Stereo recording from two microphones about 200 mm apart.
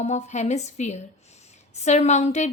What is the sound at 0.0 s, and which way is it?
A woman's voice, 35° left (ahead or behind).